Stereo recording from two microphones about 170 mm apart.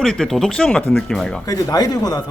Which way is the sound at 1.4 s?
20° left (ahead or behind).